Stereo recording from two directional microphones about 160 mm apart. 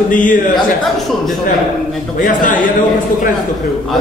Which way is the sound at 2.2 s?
55° left (ahead or behind).